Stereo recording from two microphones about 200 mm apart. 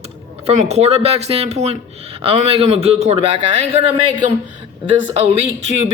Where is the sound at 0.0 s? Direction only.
35° right (ahead or behind).